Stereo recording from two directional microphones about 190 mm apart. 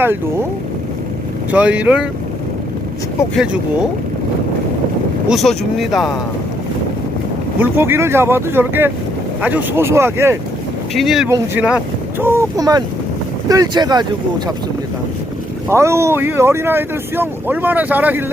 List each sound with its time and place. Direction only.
1.5 s speech: 5° right (ahead or behind)
3.3 s speech: 5° right (ahead or behind)
5.3 s speech: centre (ahead or behind)
7.6 s speech: 10° right (ahead or behind)
10.9 s speech: centre (ahead or behind)
11.3 s speech: 10° right (ahead or behind)
15.7 s speech: 15° right (ahead or behind)